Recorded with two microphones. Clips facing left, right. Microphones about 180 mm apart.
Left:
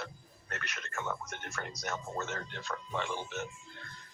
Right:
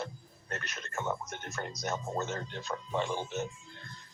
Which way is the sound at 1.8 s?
20° right (ahead or behind).